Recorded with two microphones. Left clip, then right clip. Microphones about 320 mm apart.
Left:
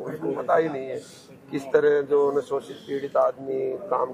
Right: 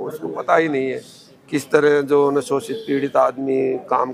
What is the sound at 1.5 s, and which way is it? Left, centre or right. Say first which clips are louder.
A man's voice: right 5 dB; right.